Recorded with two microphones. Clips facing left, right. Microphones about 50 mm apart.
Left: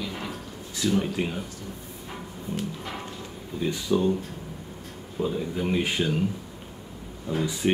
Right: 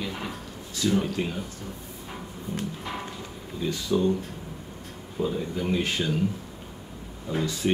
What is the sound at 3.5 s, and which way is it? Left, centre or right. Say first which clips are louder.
Speech: left 1 dB; centre.